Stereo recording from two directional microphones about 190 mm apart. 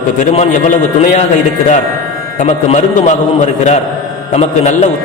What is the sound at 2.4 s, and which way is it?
Speech, 40° left (ahead or behind).